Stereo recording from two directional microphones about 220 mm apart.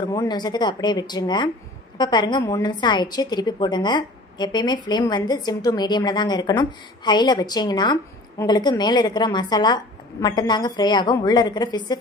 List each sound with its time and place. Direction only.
0.1 s a woman's voice: 15° left (ahead or behind)